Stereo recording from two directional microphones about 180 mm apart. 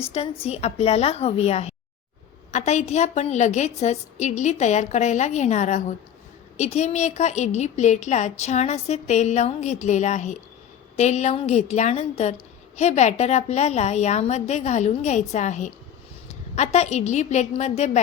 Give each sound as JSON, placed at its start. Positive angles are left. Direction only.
{"t": 0.1, "sound": "a woman's voice", "side_deg": 35}